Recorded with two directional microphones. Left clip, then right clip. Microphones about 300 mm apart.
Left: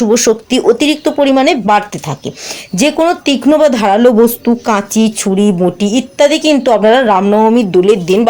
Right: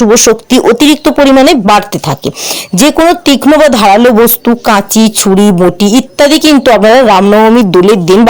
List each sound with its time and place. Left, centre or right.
0.0 s a woman's voice: right